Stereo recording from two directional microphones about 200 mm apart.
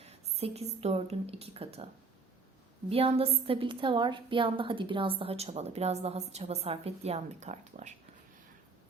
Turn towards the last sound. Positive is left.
turn(degrees=-35)  # may be behind; listen again after turning